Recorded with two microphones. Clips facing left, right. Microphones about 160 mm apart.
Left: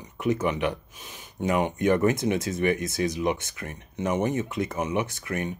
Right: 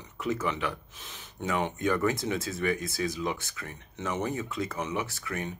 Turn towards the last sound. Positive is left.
turn(degrees=20)  # may be behind; listen again after turning